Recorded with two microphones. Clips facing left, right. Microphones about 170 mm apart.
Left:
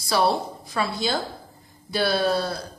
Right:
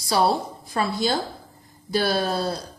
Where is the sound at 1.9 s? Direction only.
45° right (ahead or behind).